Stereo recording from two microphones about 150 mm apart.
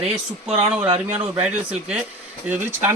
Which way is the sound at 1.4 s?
10° right (ahead or behind).